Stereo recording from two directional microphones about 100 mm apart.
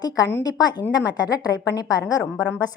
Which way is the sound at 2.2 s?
15° left (ahead or behind).